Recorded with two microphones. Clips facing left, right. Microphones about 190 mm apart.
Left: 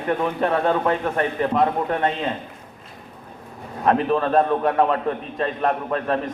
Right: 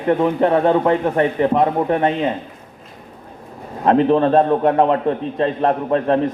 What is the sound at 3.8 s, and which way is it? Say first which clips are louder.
A man's voice: right 6 dB; 25° right (ahead or behind).